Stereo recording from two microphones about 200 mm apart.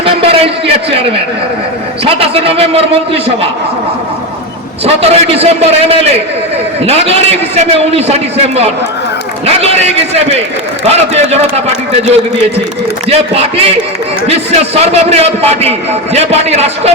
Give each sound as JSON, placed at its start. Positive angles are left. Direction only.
{"t": 0.0, "sound": "a sound", "side_deg": -30}
{"t": 2.0, "sound": "a man's voice", "side_deg": -30}
{"t": 4.9, "sound": "a man's voice", "side_deg": -30}